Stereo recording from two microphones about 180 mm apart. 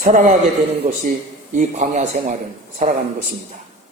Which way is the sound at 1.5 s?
40° right (ahead or behind).